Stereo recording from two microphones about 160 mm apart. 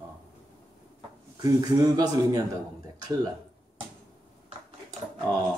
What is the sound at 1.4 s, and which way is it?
Speech, 20° right (ahead or behind).